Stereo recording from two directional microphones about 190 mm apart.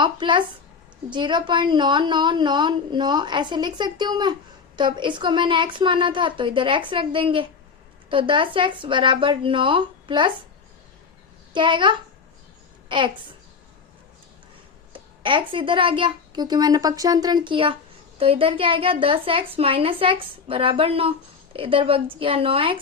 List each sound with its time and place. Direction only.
0.0 s a woman's voice: 25° right (ahead or behind)
11.5 s a woman's voice: 25° right (ahead or behind)
14.9 s a woman's voice: 25° right (ahead or behind)